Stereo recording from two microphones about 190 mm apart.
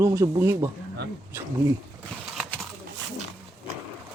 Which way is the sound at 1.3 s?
10° right (ahead or behind).